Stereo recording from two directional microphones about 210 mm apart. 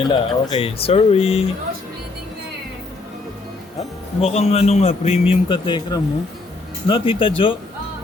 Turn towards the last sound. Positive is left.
turn(degrees=25)  # may be behind; listen again after turning